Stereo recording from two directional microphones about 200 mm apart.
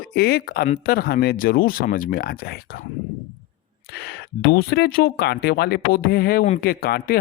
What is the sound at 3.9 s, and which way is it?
Speech, 55° left (ahead or behind).